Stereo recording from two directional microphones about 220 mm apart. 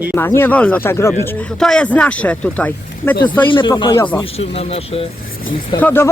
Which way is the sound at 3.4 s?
20° left (ahead or behind).